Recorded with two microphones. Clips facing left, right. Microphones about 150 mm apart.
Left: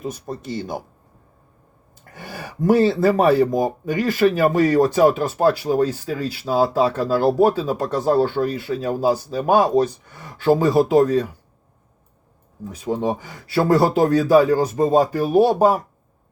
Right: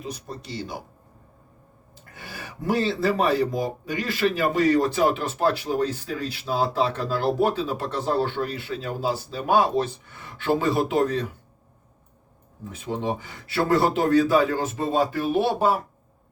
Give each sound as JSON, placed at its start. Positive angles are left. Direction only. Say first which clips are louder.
{"t": 0.0, "sound": "speech", "louder": "left 6 dB", "side_deg": 50}
{"t": 2.1, "sound": "a sound", "louder": "left 7 dB", "side_deg": 45}
{"t": 3.1, "sound": "speech", "louder": "left 6 dB", "side_deg": 45}
{"t": 12.7, "sound": "speech", "louder": "left 5 dB", "side_deg": 40}